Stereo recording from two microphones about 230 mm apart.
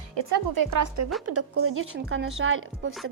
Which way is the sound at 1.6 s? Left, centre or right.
Right.